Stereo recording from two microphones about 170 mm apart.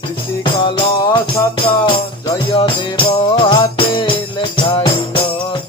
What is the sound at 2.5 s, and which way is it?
Music, 30° left (ahead or behind).